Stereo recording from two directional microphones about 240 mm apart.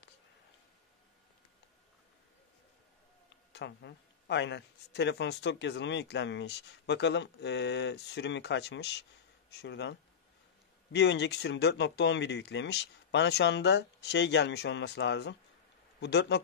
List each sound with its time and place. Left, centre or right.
3.5 s speech: left